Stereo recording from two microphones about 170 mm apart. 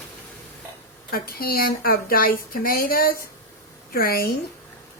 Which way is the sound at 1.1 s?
60° left (ahead or behind).